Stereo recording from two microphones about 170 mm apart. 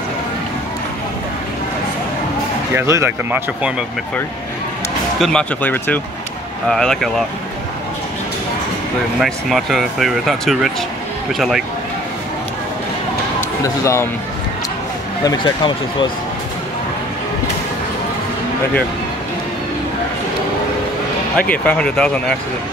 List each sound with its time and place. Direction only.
2.7 s speech: 15° right (ahead or behind)
5.2 s speech: 5° left (ahead or behind)
9.2 s speech: centre (ahead or behind)
15.2 s speech: 25° left (ahead or behind)
21.4 s speech: 5° left (ahead or behind)